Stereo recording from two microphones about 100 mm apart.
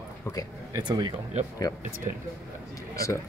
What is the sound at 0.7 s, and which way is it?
Speech, 45° right (ahead or behind).